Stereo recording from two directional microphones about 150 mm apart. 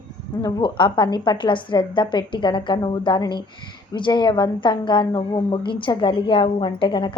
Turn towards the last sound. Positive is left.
turn(degrees=35)  # may be behind; listen again after turning